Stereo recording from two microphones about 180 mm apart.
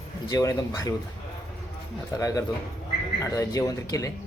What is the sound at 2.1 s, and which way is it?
A man's voice, 20° left (ahead or behind).